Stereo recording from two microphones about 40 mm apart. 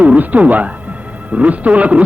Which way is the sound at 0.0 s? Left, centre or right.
Right.